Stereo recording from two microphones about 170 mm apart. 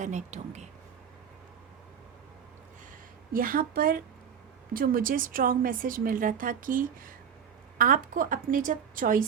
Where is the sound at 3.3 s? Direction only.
55° right (ahead or behind).